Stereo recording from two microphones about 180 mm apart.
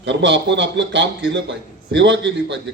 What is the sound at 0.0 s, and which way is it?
A man's voice, 80° right.